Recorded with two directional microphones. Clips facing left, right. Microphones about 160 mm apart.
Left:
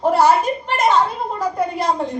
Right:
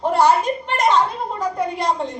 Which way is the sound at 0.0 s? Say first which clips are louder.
Left 2 dB; 5° left (ahead or behind).